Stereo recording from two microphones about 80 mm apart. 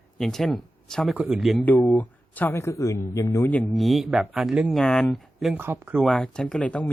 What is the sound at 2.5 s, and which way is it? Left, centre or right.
Speech, left.